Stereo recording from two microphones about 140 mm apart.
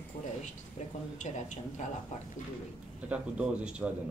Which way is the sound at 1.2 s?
60° left (ahead or behind).